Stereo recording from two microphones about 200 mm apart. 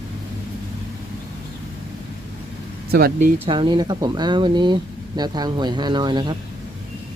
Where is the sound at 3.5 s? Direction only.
25° right (ahead or behind).